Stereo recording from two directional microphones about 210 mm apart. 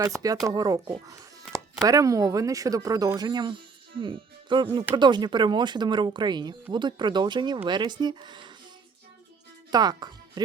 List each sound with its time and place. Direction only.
0.0 s speech: 15° right (ahead or behind)
9.7 s speech: 20° right (ahead or behind)